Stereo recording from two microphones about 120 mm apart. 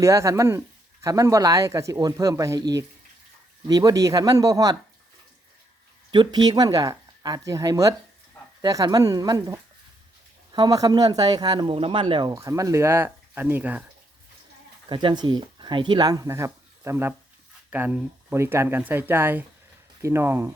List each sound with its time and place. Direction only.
0.0 s speech: 25° right (ahead or behind)
3.7 s speech: 30° right (ahead or behind)
6.1 s speech: 40° right (ahead or behind)
12.3 s speech: 30° right (ahead or behind); by 13.8 s 15° right (ahead or behind)
14.8 s speech: 40° right (ahead or behind); by 20.5 s 20° right (ahead or behind)